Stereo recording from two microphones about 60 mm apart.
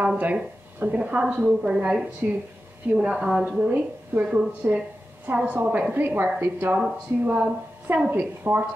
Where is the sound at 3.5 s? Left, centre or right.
Right.